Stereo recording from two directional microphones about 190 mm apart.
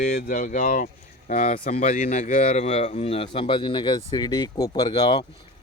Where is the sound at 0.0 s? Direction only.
45° left (ahead or behind).